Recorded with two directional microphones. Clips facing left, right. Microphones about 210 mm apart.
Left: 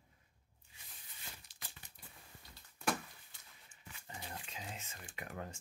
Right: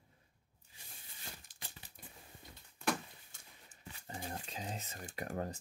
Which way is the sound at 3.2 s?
40° right (ahead or behind).